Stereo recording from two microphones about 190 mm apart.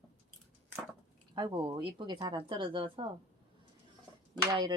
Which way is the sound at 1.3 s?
25° right (ahead or behind).